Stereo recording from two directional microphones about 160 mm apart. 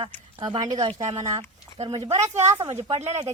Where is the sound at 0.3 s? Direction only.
30° right (ahead or behind).